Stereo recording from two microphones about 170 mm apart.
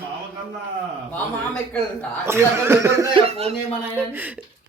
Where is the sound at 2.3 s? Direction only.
15° right (ahead or behind).